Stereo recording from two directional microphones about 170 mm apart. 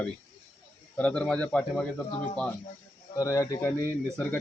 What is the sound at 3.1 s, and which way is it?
Speech, 15° left (ahead or behind).